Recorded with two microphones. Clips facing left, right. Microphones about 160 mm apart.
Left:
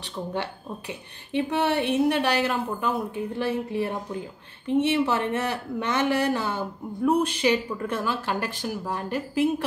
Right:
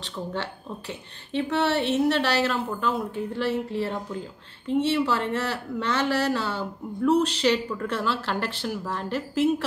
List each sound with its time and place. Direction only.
0.0 s speech: 15° left (ahead or behind)